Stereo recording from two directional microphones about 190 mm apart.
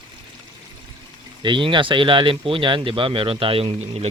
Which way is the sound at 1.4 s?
25° right (ahead or behind).